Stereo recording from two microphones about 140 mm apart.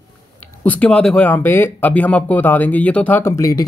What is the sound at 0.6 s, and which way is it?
Speech, 10° left (ahead or behind).